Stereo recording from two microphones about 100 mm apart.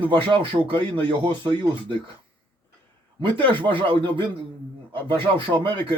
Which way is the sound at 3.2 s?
60° right (ahead or behind).